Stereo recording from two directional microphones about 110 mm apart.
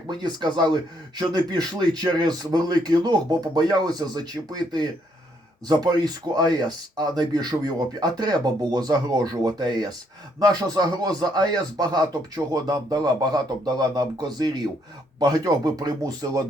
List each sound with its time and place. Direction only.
0.1 s speech: 40° right (ahead or behind)